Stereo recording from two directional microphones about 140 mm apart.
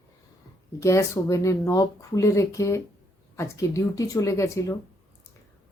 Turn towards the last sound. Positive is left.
turn(degrees=20)  # may be behind; listen again after turning